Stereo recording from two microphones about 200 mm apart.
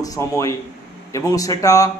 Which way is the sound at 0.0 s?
15° left (ahead or behind).